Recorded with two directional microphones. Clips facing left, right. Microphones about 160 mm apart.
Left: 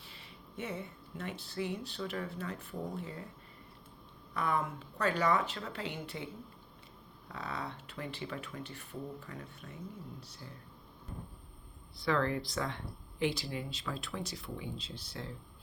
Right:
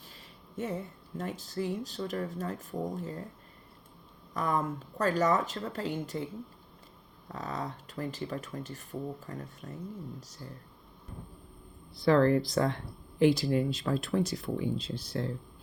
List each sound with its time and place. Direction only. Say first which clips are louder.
0.0 s speech: right 1 dB; 40° right (ahead or behind)
4.4 s speech: right 3 dB; 40° right (ahead or behind)
7.3 s speech: right 4 dB; 40° right (ahead or behind)
11.9 s speech: right 9 dB; 40° right (ahead or behind)